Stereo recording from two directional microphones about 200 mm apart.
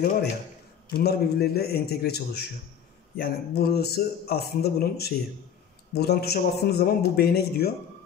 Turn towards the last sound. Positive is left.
turn(degrees=50)  # may be behind; listen again after turning